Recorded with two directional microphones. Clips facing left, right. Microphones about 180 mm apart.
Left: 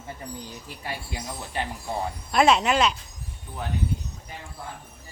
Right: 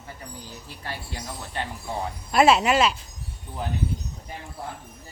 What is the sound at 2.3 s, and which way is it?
Speech, 5° right (ahead or behind).